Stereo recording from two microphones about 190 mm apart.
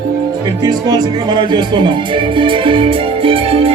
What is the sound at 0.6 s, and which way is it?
Music, 20° right (ahead or behind).